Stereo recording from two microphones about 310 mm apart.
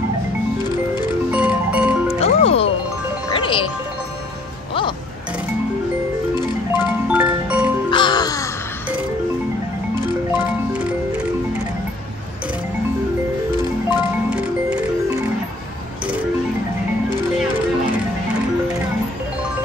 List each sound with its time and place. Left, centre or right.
1.3 s music: centre
2.1 s music: centre
6.7 s music: centre
7.9 s music: centre
10.3 s music: centre
13.8 s music: centre